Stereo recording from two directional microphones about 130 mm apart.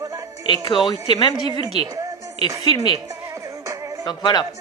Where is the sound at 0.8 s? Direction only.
35° left (ahead or behind).